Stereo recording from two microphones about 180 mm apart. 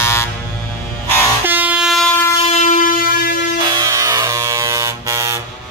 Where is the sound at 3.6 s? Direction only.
25° right (ahead or behind).